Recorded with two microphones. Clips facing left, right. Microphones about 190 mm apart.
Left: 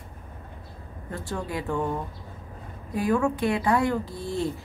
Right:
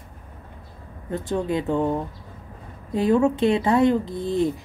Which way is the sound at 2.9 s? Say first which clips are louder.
Right 5 dB; 25° right (ahead or behind).